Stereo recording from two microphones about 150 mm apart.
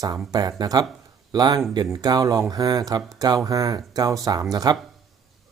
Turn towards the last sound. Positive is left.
turn(degrees=-25)  # may be behind; listen again after turning